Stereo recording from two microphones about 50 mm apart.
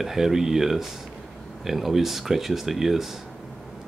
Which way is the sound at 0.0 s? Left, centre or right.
Centre.